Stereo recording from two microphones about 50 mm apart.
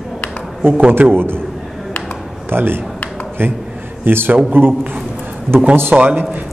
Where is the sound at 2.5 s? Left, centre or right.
Right.